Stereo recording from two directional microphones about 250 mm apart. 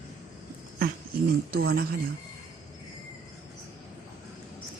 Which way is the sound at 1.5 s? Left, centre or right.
Right.